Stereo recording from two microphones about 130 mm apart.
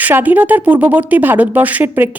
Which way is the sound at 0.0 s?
15° right (ahead or behind).